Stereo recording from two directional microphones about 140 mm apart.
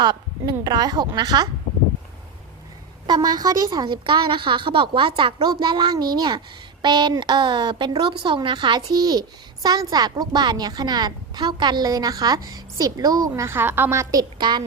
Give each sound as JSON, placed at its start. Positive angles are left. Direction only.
{"t": 0.0, "sound": "a woman's voice", "side_deg": -30}
{"t": 3.1, "sound": "a woman's voice", "side_deg": -30}